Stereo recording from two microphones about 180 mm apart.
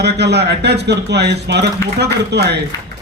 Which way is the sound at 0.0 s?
70° right (ahead or behind).